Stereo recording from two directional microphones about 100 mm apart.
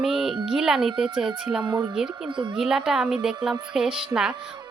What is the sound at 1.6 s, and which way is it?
Speech, 45° right (ahead or behind).